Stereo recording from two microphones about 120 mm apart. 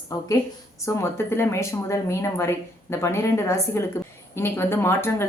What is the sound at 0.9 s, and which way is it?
Speech, 20° left (ahead or behind).